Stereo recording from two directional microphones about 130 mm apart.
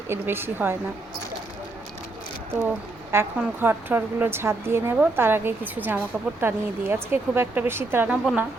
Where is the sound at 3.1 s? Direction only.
20° right (ahead or behind).